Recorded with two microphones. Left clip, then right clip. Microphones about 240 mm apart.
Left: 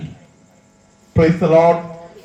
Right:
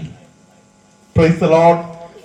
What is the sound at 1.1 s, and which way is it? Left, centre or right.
Speech, right.